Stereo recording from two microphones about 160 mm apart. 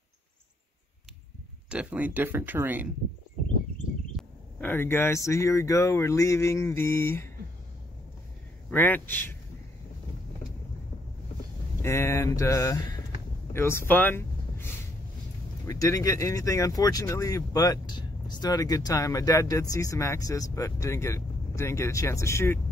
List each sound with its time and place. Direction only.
1.7 s speech: 10° right (ahead or behind)
4.2 s speech: 10° left (ahead or behind)
8.6 s a man's voice: 10° left (ahead or behind)
11.8 s speech: 15° left (ahead or behind)